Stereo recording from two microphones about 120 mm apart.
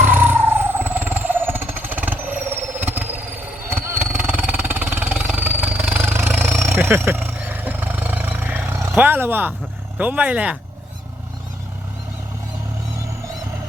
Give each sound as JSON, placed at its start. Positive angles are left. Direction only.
{"t": 0.0, "sound": "vehicle", "side_deg": -15}
{"t": 6.4, "sound": "roaring cats", "side_deg": -20}
{"t": 10.0, "sound": "speech", "side_deg": -15}